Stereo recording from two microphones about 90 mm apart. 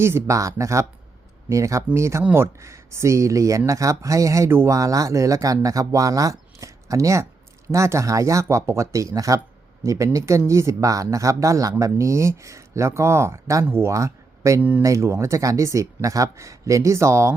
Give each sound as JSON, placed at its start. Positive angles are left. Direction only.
{"t": 0.0, "sound": "speech", "side_deg": -30}